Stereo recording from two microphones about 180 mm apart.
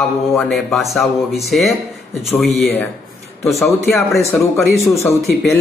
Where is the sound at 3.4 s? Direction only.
Centre (ahead or behind).